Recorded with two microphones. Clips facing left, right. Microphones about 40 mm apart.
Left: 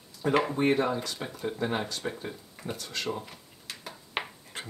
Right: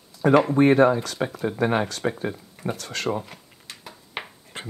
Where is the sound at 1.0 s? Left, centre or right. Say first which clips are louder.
Right 7 dB; right.